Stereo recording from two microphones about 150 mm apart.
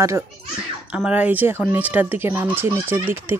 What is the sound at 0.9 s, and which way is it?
Speech, 10° right (ahead or behind).